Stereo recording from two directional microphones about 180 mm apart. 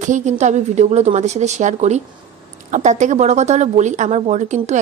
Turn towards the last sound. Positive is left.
turn(degrees=-40)  # may be behind; listen again after turning